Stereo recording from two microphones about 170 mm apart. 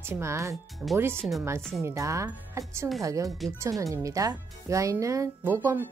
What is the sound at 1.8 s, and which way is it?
Speech, 15° right (ahead or behind).